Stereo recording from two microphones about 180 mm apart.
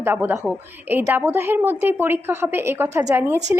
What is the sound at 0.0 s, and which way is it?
A woman's voice, 10° right (ahead or behind).